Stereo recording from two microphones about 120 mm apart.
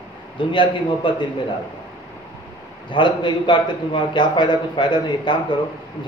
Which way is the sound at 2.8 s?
40° left (ahead or behind).